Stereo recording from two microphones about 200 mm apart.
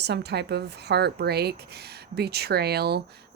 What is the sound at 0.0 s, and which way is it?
A woman's voice, 55° right (ahead or behind).